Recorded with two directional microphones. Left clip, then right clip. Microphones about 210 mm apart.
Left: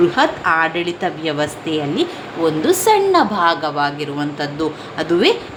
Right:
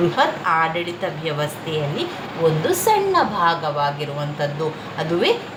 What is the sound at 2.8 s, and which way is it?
A woman's voice, 55° left (ahead or behind).